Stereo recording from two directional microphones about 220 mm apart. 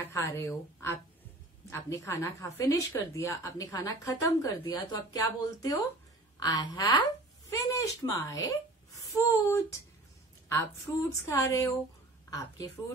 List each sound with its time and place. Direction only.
0.1 s a woman's voice: 15° left (ahead or behind)